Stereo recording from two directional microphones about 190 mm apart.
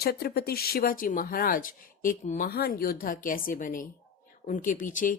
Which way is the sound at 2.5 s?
55° left (ahead or behind).